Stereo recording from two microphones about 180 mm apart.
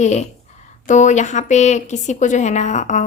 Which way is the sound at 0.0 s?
40° left (ahead or behind).